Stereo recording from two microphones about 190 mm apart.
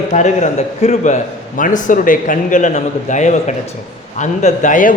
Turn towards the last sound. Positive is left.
turn(degrees=45)  # may be behind; listen again after turning